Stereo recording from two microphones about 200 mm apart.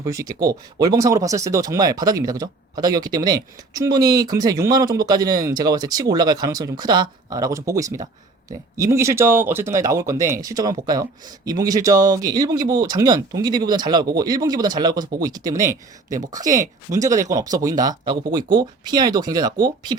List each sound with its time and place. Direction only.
0.0 s speech: 15° right (ahead or behind)
16.0 s speech: 40° right (ahead or behind)
16.9 s speech: 15° right (ahead or behind)